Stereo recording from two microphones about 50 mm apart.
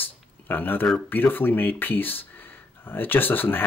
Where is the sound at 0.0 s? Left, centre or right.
Left.